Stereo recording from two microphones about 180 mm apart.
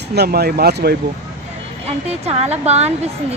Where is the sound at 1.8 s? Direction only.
35° right (ahead or behind).